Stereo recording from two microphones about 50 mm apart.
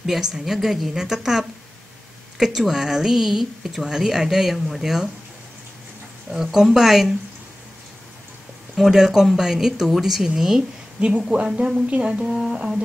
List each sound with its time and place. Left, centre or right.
0.0 s a woman's voice: centre
6.3 s a woman's voice: centre
8.7 s speech: centre
11.0 s a woman's voice: right